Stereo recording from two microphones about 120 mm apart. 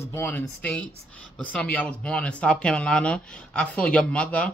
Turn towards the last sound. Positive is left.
turn(degrees=10)  # may be behind; listen again after turning